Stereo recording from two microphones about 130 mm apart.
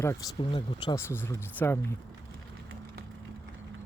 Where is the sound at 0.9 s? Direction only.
20° left (ahead or behind).